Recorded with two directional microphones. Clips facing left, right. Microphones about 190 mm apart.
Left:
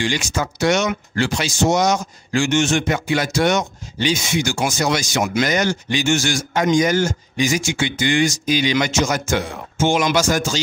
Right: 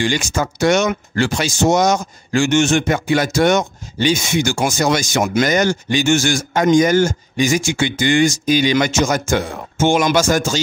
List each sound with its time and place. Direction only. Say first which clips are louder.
0.0 s speech: right 3 dB; 50° right (ahead or behind)